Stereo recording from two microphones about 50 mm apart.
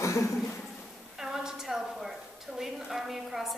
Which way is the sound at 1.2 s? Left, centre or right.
Centre.